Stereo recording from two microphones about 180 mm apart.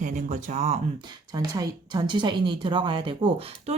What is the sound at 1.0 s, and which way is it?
A woman's voice, 20° right (ahead or behind).